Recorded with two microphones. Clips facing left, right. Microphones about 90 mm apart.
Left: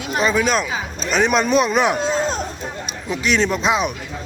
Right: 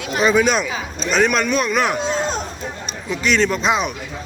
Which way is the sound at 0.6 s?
10° left (ahead or behind).